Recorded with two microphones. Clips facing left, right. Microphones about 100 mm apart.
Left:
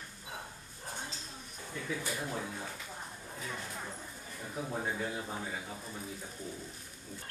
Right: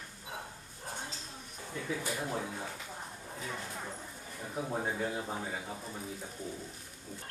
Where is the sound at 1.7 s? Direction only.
25° right (ahead or behind).